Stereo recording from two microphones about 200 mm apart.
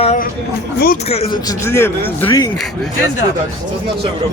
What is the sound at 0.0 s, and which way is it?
Speech, 35° left (ahead or behind).